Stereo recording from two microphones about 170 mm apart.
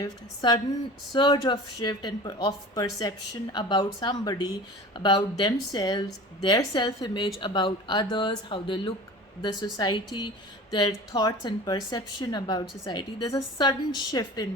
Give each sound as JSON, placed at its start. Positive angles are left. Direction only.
{"t": 0.0, "sound": "a woman's voice", "side_deg": 20}